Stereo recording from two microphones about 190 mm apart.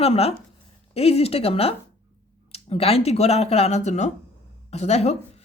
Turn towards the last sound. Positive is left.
turn(degrees=35)  # may be behind; listen again after turning